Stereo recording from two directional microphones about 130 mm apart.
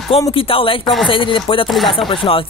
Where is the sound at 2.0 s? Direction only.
45° left (ahead or behind).